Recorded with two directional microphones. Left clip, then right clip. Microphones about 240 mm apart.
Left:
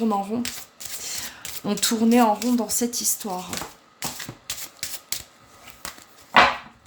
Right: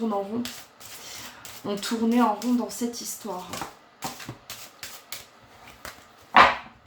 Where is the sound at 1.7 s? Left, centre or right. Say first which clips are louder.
Left 5 dB; left.